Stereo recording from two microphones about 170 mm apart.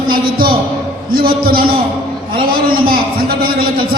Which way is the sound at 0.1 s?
60° right (ahead or behind).